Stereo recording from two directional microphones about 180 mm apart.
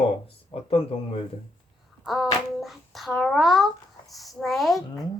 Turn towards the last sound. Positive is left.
turn(degrees=0)  # may be behind; listen again after turning